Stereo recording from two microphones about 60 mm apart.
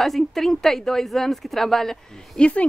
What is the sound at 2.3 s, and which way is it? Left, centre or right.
Speech, centre.